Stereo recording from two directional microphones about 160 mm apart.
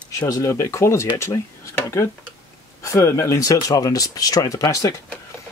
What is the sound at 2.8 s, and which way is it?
Speech, 15° left (ahead or behind).